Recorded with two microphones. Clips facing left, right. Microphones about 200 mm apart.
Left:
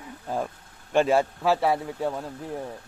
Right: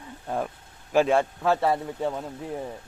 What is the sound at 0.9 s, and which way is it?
A man's voice, centre (ahead or behind).